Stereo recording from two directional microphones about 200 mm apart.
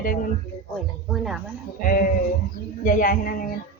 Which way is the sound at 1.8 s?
45° left (ahead or behind).